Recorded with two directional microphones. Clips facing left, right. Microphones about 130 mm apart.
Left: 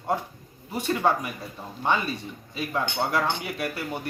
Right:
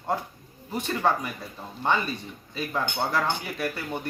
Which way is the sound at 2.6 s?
5° left (ahead or behind).